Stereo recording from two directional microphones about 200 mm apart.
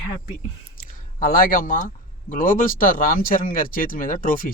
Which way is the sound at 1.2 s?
45° left (ahead or behind).